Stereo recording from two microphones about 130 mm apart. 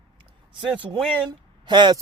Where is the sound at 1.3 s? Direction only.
35° right (ahead or behind).